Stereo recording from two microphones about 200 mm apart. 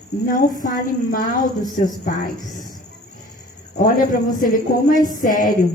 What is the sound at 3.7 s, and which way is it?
A woman's voice, 45° left (ahead or behind).